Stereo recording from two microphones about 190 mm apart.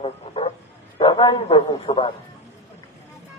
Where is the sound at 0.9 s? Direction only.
25° left (ahead or behind).